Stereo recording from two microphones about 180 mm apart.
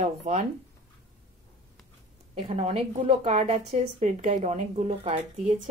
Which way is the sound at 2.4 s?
40° right (ahead or behind).